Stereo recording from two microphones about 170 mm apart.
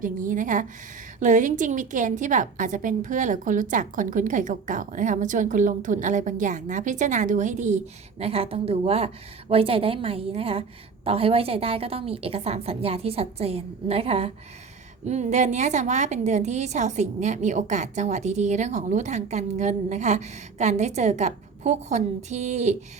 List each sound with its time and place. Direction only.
0.0 s a woman's voice: 50° right (ahead or behind)
8.2 s a woman's voice: 35° right (ahead or behind)